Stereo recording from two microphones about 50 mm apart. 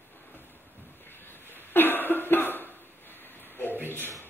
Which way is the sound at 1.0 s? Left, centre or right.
Left.